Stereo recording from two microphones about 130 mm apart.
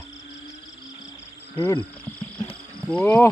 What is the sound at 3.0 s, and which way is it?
Speech, 15° left (ahead or behind).